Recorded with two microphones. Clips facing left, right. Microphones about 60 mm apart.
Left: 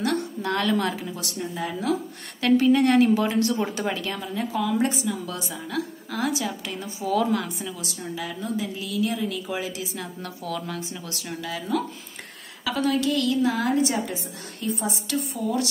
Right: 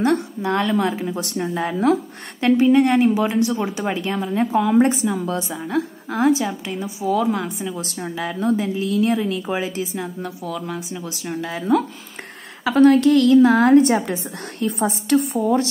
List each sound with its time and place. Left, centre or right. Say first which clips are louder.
0.4 s a woman's voice: right 4 dB; right
0.9 s a woman's voice: right 7 dB; right
1.3 s a woman's voice: right 6 dB; right
2.4 s a woman's voice: right 4 dB; right
4.3 s a woman's voice: right 8 dB; right
7.8 s a woman's voice: right 5 dB; right
10.2 s speech: right 4 dB; centre
11.4 s a woman's voice: right 5 dB; right
12.6 s a woman's voice: right 10 dB; right